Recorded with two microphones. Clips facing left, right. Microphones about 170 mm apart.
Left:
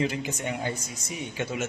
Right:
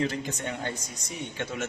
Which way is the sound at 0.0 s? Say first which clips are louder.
Left 1 dB; 10° left (ahead or behind).